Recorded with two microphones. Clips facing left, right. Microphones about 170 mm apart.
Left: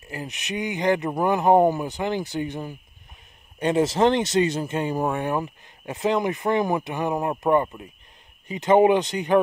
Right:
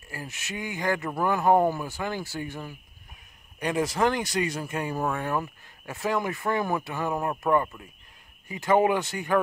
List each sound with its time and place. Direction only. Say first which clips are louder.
0.1 s speech: left 6 dB; 20° left (ahead or behind)